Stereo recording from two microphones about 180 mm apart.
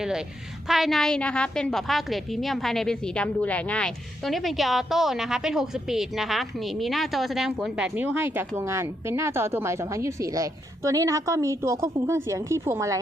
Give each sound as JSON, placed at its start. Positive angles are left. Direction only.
{"t": 0.7, "sound": "a woman's voice", "side_deg": 0}